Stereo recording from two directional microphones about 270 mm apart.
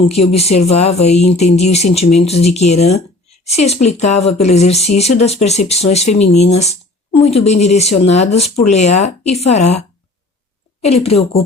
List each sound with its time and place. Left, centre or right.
0.3 s speech: left
10.8 s speech: left